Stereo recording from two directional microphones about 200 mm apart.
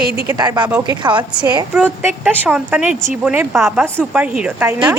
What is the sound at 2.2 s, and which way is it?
A woman's voice, 10° right (ahead or behind).